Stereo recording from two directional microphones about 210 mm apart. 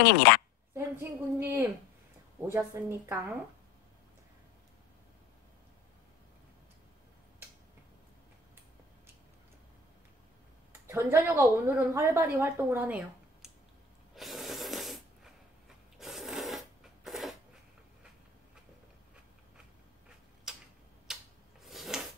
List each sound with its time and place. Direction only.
0.3 s a woman's voice: 45° left (ahead or behind)
0.7 s a woman's voice: 10° right (ahead or behind)
10.7 s a woman's voice: 10° right (ahead or behind)
14.1 s a sound: centre (ahead or behind)
16.0 s filing: centre (ahead or behind)
20.5 s tick-tock: 5° right (ahead or behind)
21.1 s a sound: centre (ahead or behind)